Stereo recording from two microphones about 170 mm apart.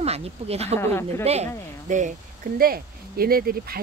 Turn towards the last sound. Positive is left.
turn(degrees=-60)  # may be behind; listen again after turning